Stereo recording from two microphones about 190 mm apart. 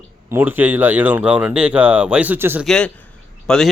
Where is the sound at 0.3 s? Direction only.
10° right (ahead or behind).